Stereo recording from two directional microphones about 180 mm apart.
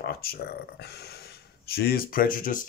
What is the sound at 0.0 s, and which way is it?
Speech, 60° left (ahead or behind).